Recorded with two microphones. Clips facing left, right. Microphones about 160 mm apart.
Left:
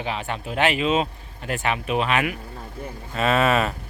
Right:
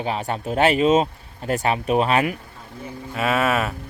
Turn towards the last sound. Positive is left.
turn(degrees=-5)  # may be behind; listen again after turning